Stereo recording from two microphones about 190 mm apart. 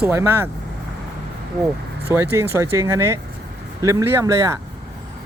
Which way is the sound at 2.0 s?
10° right (ahead or behind).